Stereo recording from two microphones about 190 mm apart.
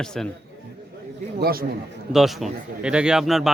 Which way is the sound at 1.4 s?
50° right (ahead or behind).